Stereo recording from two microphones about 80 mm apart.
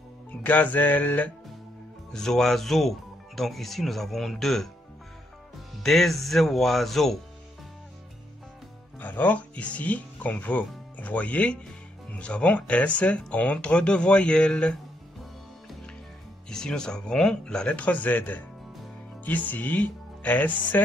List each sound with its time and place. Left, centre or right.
0.4 s music: left
2.1 s speech: centre
5.8 s speech: centre
9.0 s speech: left
16.4 s speech: centre
19.2 s music: left